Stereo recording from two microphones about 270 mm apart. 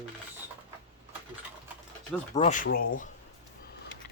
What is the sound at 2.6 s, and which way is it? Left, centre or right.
Speech, left.